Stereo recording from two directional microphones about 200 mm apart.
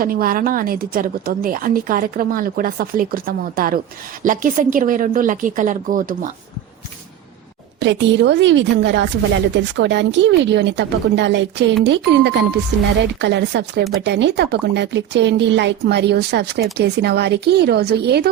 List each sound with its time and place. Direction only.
0.0 s a woman's voice: 45° right (ahead or behind)
7.8 s a woman's voice: 65° right (ahead or behind)